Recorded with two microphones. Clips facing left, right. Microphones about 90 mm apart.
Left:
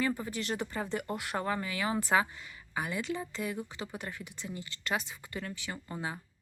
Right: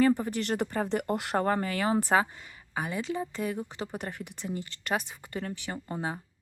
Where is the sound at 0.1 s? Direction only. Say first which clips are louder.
Right 7 dB; 55° right (ahead or behind).